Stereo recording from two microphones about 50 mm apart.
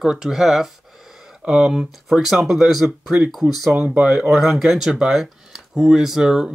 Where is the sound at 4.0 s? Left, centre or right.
Centre.